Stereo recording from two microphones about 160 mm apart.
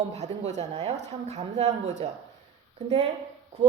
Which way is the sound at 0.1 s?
40° right (ahead or behind).